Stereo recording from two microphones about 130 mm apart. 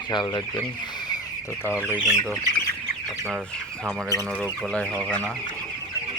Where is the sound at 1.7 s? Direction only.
10° right (ahead or behind).